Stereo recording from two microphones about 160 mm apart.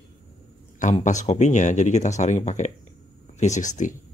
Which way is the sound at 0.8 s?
50° left (ahead or behind).